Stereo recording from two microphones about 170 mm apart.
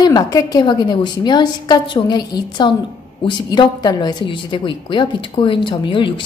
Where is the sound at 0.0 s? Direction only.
20° left (ahead or behind).